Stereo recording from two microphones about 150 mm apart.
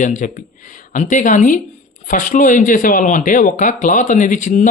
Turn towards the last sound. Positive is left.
turn(degrees=60)  # may be behind; listen again after turning